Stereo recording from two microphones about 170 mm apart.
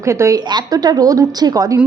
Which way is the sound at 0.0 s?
15° right (ahead or behind).